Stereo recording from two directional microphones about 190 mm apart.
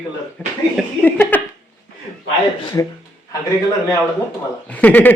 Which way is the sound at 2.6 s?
15° left (ahead or behind).